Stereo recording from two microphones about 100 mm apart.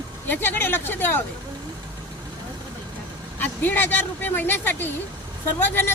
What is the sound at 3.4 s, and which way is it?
Speech, 20° left (ahead or behind).